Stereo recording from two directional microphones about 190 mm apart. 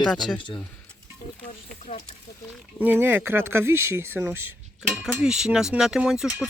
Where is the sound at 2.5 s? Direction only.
10° right (ahead or behind).